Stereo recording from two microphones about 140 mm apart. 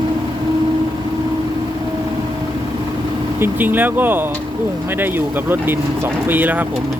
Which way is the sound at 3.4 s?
15° right (ahead or behind).